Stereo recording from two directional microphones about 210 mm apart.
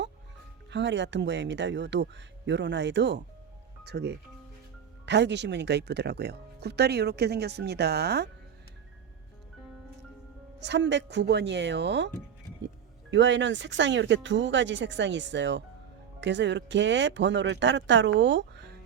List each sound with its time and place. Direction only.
0.7 s speech: 55° right (ahead or behind)
10.6 s speech: 55° right (ahead or behind)